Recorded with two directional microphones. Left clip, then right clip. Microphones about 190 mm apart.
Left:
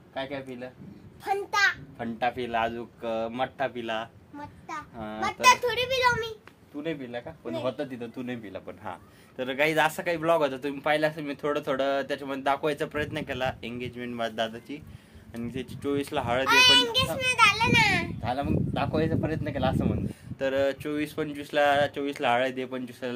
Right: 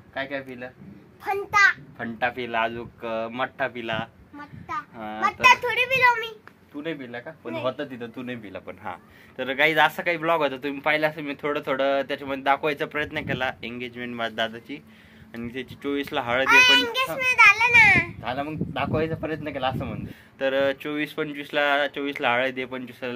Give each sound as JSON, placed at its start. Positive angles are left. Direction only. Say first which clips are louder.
{"t": 0.1, "sound": "speech", "louder": "right 3 dB", "side_deg": -20}
{"t": 2.0, "sound": "a man's voice", "louder": "right 2 dB", "side_deg": -15}
{"t": 5.2, "sound": "a child's voice", "louder": "right 3 dB", "side_deg": -5}
{"t": 6.8, "sound": "a man's voice", "louder": "right 1 dB", "side_deg": -15}
{"t": 16.4, "sound": "a child's voice", "louder": "right 3 dB", "side_deg": 0}
{"t": 18.2, "sound": "a man's voice", "louder": "even", "side_deg": -15}